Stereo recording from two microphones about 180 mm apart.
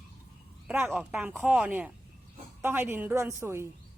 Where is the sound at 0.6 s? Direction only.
10° right (ahead or behind).